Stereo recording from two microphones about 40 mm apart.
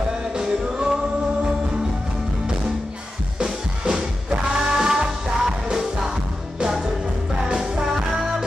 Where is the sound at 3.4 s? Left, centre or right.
Centre.